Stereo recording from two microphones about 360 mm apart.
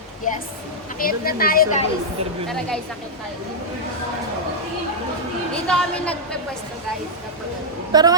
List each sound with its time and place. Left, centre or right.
0.9 s speech: left
5.5 s a woman's voice: centre
7.9 s a woman's voice: centre